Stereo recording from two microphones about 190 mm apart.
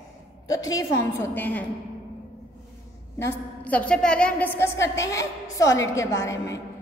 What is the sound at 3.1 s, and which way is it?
A woman's voice, 10° left (ahead or behind).